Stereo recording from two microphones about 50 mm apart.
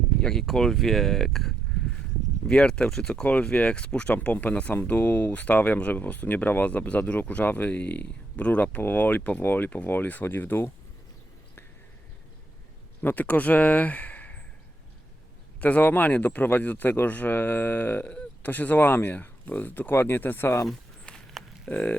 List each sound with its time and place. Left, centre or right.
0.2 s speech: centre
2.5 s speech: left
3.4 s speech: left
13.0 s speech: left
15.6 s speech: left
21.4 s a sound: centre